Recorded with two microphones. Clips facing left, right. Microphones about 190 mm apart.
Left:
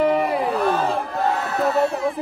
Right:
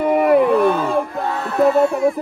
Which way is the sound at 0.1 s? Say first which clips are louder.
Right 7 dB; 55° right (ahead or behind).